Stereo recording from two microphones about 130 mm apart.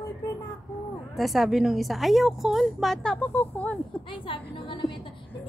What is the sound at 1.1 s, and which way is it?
A woman's voice, centre (ahead or behind).